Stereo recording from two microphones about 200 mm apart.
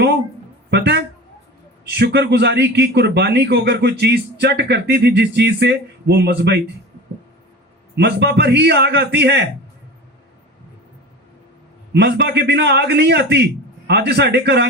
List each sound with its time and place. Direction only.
0.7 s a man's voice: 55° right (ahead or behind)
7.9 s a man's voice: 55° right (ahead or behind)
11.9 s a man's voice: 55° right (ahead or behind)